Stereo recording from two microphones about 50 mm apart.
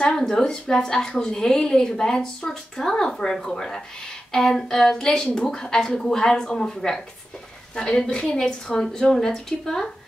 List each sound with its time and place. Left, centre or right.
0.1 s a woman's voice: centre